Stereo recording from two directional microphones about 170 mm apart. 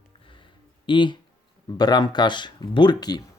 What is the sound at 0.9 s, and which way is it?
Speech, 30° left (ahead or behind).